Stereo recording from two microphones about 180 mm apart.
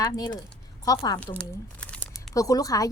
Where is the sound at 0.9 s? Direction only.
20° left (ahead or behind).